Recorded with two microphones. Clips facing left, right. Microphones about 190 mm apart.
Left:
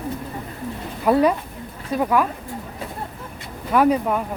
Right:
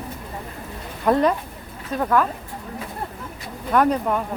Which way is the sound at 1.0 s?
10° left (ahead or behind).